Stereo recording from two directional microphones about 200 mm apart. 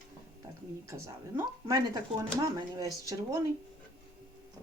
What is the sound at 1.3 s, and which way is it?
A woman's voice, 15° right (ahead or behind).